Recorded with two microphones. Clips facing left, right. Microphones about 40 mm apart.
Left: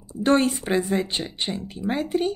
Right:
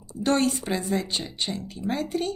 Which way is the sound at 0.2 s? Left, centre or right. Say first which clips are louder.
Left 3 dB; left.